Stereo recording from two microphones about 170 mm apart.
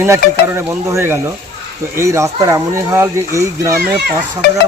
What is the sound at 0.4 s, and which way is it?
Speech, 15° right (ahead or behind).